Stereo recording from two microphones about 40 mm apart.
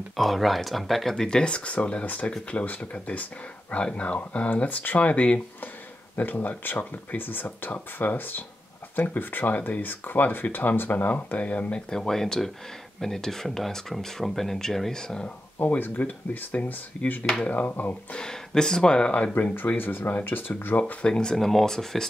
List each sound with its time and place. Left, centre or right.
0.1 s speech: centre
1.1 s speech: centre
1.5 s speech: left
2.5 s speech: left
6.1 s speech: left
11.3 s speech: left
11.9 s speech: centre
15.6 s speech: left
16.0 s speech: left
18.1 s speech: centre
19.4 s speech: left
20.1 s speech: left
21.0 s speech: left
21.4 s speech: centre